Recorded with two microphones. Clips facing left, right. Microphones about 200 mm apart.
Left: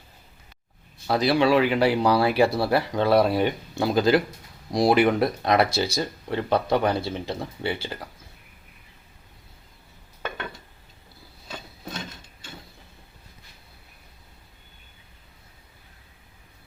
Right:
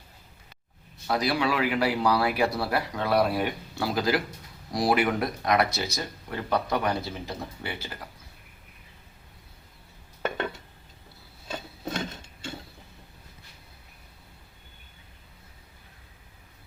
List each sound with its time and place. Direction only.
1.0 s speech: 30° left (ahead or behind)